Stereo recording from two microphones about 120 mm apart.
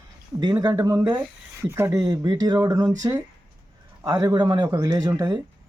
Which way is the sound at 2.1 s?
35° right (ahead or behind).